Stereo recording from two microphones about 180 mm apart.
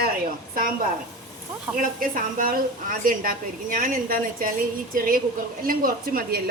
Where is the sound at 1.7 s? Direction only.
50° right (ahead or behind).